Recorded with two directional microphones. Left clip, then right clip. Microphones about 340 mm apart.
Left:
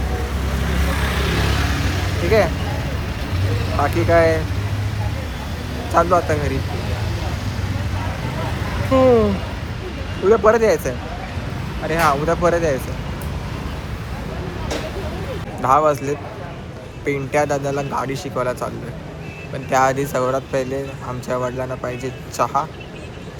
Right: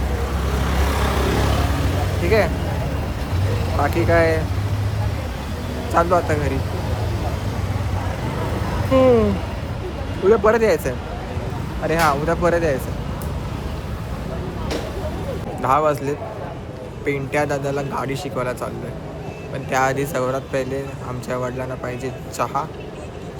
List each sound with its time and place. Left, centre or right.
0.7 s vehicle: centre
2.2 s speech: centre
3.8 s speech: centre
5.9 s speech: centre
8.9 s speech: centre
10.2 s speech: centre
15.6 s speech: centre
19.7 s speech: centre